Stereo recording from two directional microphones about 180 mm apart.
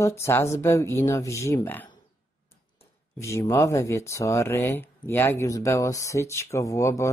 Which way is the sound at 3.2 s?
15° left (ahead or behind).